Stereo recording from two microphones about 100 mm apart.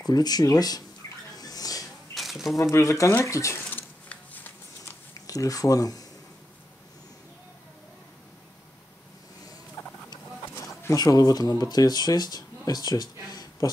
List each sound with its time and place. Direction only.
0.0 s speech: 40° left (ahead or behind)
1.3 s rodents: 40° left (ahead or behind)
2.1 s a sound: centre (ahead or behind)
2.7 s speech: 30° left (ahead or behind)
3.7 s a sound: 20° left (ahead or behind)
5.1 s speech: 35° left (ahead or behind)
9.8 s fowl: 20° left (ahead or behind)
10.8 s speech: 30° left (ahead or behind)